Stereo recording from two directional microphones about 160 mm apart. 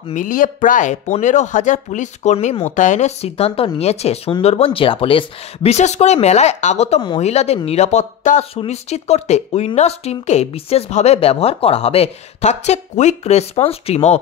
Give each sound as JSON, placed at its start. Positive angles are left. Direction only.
{"t": 0.1, "sound": "speech", "side_deg": 55}